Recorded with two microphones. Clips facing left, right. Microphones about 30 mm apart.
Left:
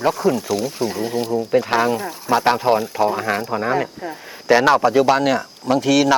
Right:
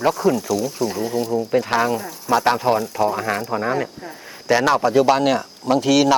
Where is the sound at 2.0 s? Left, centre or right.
Left.